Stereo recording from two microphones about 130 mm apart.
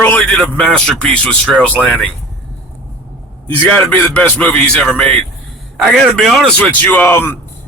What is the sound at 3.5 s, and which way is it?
A man's voice, 10° left (ahead or behind).